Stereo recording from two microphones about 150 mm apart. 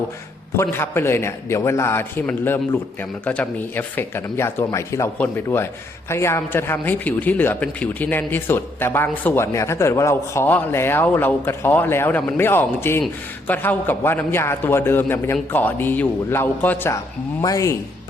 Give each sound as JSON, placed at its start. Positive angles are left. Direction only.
{"t": 0.5, "sound": "speech", "side_deg": 15}